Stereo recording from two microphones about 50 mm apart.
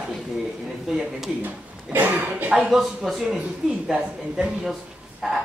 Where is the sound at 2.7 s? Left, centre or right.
Centre.